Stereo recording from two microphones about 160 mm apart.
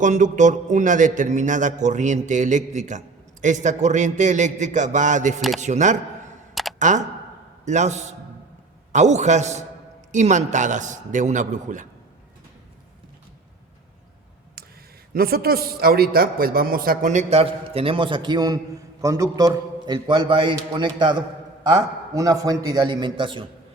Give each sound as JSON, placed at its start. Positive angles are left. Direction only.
{"t": 0.0, "sound": "a man's voice", "side_deg": -50}
{"t": 6.5, "sound": "camera", "side_deg": 0}
{"t": 6.7, "sound": "a man's voice", "side_deg": -50}
{"t": 15.1, "sound": "a man's voice", "side_deg": -70}